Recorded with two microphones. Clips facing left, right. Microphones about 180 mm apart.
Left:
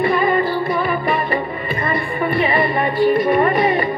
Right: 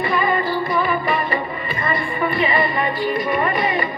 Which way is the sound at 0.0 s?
50° left (ahead or behind).